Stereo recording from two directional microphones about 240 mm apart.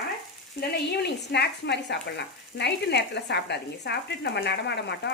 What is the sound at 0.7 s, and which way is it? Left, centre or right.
Speech, left.